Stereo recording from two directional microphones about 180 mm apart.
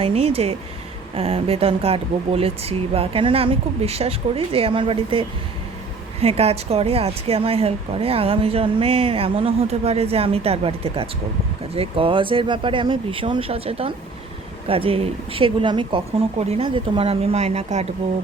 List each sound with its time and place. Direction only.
0.0 s speech: 30° right (ahead or behind)